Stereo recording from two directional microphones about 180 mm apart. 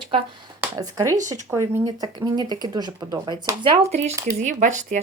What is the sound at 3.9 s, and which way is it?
Speech, 40° right (ahead or behind).